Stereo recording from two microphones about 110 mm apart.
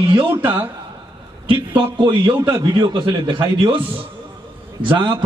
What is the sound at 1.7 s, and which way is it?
A man's voice, 45° right (ahead or behind).